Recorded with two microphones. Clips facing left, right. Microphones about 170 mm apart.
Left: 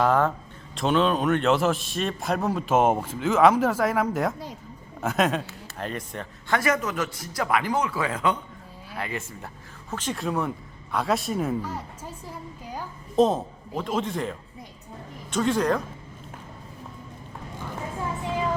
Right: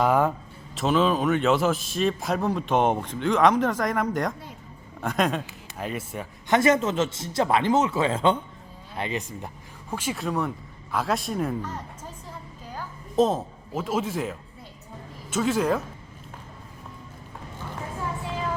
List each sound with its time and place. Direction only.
0.0 s a man's voice: 10° right (ahead or behind)
6.5 s speech: 25° right (ahead or behind)
9.9 s a man's voice: 10° right (ahead or behind)
13.1 s a man's voice: centre (ahead or behind)